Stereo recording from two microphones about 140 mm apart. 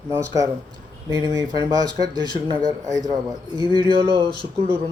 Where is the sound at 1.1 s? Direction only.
25° right (ahead or behind).